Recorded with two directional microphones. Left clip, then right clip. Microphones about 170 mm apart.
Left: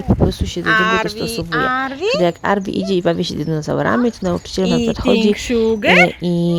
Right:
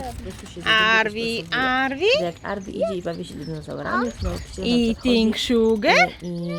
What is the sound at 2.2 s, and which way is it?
Speech, 55° left (ahead or behind).